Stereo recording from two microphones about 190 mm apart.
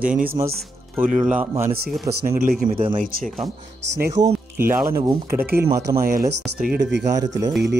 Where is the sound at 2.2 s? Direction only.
50° right (ahead or behind).